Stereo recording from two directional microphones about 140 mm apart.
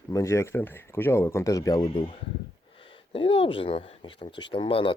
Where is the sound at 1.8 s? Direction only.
35° left (ahead or behind).